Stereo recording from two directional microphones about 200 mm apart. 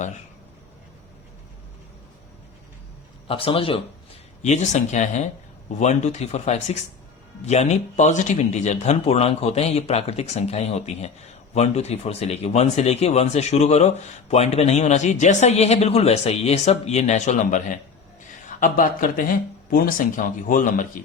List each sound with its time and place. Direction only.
3.2 s a man's voice: 30° left (ahead or behind)